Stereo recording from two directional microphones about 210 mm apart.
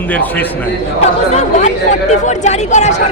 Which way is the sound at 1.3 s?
35° left (ahead or behind).